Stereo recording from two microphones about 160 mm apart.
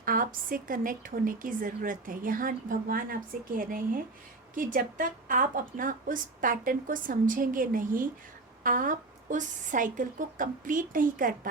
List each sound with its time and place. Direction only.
0.0 s a woman's voice: 60° right (ahead or behind)